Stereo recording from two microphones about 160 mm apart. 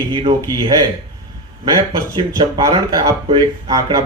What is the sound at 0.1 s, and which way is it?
Speech, 30° right (ahead or behind).